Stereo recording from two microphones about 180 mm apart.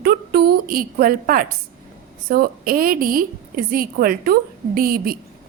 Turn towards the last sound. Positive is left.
turn(degrees=-55)  # may be behind; listen again after turning